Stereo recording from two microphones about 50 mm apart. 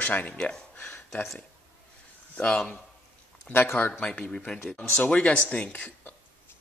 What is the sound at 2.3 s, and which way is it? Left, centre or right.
Speech, left.